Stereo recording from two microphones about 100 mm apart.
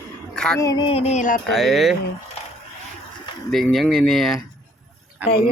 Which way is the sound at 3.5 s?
Centre (ahead or behind).